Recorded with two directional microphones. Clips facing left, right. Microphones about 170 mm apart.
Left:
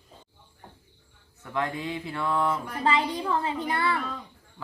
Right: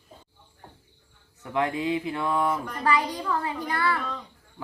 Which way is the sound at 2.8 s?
25° left (ahead or behind).